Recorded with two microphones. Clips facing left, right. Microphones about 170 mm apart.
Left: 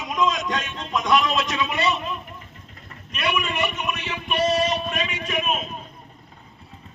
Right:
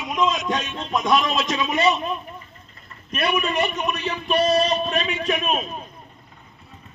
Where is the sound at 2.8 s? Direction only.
75° left (ahead or behind).